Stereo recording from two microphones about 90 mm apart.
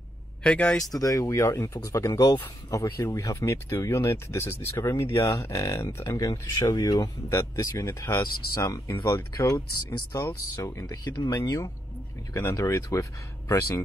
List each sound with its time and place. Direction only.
0.4 s speech: 10° left (ahead or behind)
0.8 s speech: 45° left (ahead or behind)